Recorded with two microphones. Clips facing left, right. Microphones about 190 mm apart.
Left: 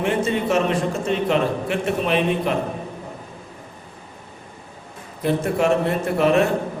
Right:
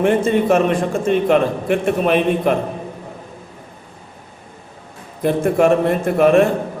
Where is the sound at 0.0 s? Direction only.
50° right (ahead or behind).